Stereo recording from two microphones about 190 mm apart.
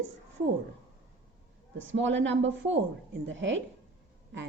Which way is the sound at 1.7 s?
75° right (ahead or behind).